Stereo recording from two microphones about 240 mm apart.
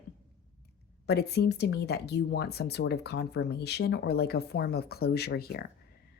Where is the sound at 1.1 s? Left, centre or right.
Left.